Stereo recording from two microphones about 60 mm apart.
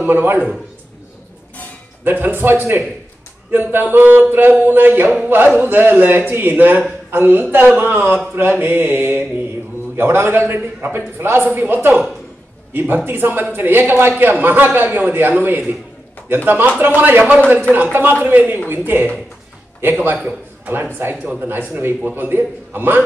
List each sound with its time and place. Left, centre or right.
0.0 s a man's voice: right
2.0 s a man's voice: right
7.9 s a man's voice: right